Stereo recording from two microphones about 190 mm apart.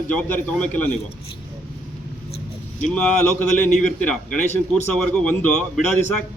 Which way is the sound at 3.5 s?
40° left (ahead or behind).